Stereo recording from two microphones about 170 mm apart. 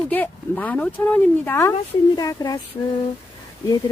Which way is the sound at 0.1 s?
10° left (ahead or behind).